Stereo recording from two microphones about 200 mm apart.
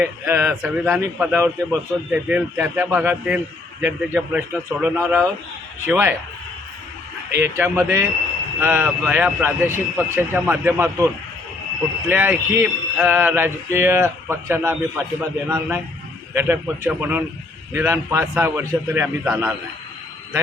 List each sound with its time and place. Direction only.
0.0 s a man's voice: 10° right (ahead or behind)
7.3 s a man's voice: 10° right (ahead or behind)